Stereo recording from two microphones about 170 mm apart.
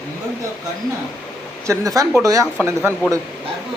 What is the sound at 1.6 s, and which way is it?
Speech, 20° right (ahead or behind).